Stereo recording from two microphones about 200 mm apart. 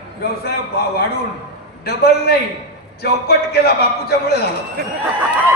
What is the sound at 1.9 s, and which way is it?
A man's voice, 55° left (ahead or behind).